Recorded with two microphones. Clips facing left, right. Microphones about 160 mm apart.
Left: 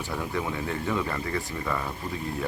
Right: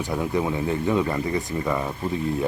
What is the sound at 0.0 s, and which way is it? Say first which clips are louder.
Speech: right 6 dB; 15° right (ahead or behind).